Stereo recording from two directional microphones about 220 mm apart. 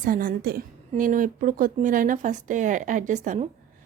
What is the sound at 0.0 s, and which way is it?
A woman's voice, 40° right (ahead or behind).